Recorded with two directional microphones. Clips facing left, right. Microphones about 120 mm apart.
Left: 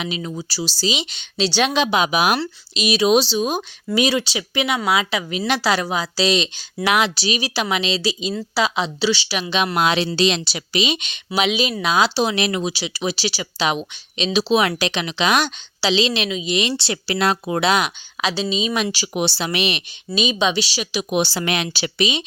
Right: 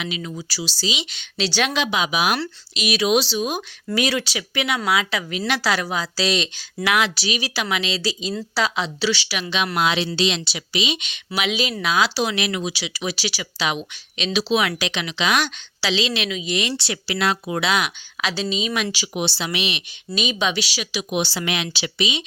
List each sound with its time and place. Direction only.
0.0 s a woman's voice: 30° left (ahead or behind)
1.9 s speech: 50° left (ahead or behind)
2.4 s a woman's voice: 25° left (ahead or behind)
9.7 s speech: 45° left (ahead or behind)
11.4 s a woman's voice: 20° left (ahead or behind); by 15.4 s 40° left (ahead or behind)
15.4 s a woman's voice: 25° left (ahead or behind)
18.2 s a woman's voice: 20° left (ahead or behind); by 19.8 s 45° left (ahead or behind)
20.1 s a woman's voice: 25° left (ahead or behind)
21.0 s speech: 40° left (ahead or behind)